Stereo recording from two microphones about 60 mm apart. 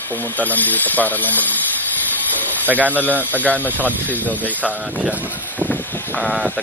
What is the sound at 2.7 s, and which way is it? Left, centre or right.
Speech, right.